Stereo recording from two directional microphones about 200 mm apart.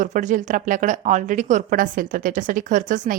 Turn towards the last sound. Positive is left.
turn(degrees=-40)  # may be behind; listen again after turning